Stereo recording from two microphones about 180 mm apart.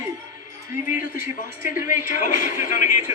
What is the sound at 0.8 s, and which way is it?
Speech, 50° left (ahead or behind).